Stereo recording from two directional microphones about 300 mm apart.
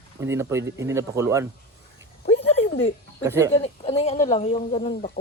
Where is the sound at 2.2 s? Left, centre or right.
Centre.